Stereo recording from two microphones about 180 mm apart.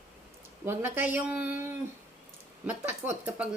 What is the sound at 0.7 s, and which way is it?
Speech, 10° right (ahead or behind).